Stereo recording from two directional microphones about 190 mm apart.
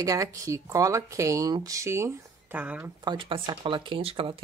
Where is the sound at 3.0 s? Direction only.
25° right (ahead or behind).